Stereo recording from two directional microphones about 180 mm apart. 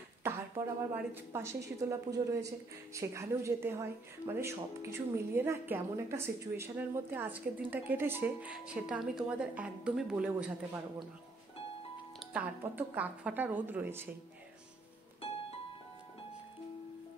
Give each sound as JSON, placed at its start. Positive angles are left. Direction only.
{"t": 0.2, "sound": "speech", "side_deg": -10}
{"t": 12.3, "sound": "speech", "side_deg": -10}